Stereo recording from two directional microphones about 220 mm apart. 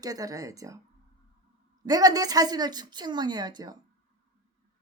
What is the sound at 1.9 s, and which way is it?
A woman's voice, 15° right (ahead or behind).